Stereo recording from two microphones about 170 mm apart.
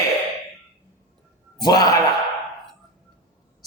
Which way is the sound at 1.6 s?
25° left (ahead or behind).